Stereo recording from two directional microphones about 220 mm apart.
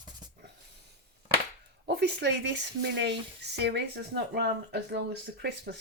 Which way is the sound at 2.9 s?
50° right (ahead or behind).